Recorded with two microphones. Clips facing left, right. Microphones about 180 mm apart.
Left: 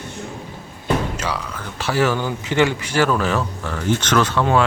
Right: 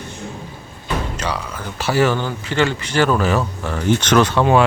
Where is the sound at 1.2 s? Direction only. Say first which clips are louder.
Right 1 dB; centre (ahead or behind).